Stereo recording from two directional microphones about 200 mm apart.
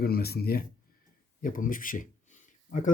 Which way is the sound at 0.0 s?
50° left (ahead or behind).